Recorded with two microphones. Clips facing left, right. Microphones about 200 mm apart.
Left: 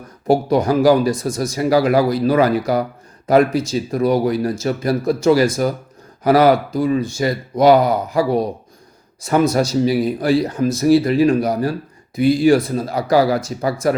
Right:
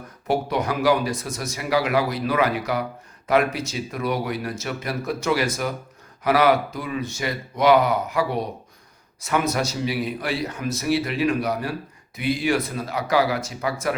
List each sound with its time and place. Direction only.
0.3 s a man's voice: 35° left (ahead or behind)